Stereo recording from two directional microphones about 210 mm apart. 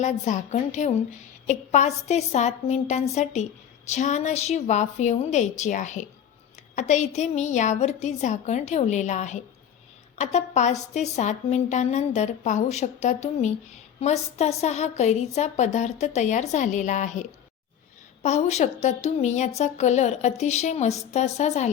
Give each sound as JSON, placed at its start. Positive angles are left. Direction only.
{"t": 0.0, "sound": "a woman's voice", "side_deg": 35}